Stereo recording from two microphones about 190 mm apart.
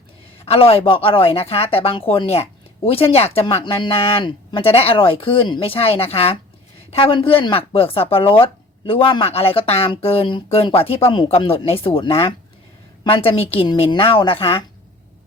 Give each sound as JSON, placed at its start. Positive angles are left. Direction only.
{"t": 0.3, "sound": "a woman's voice", "side_deg": 30}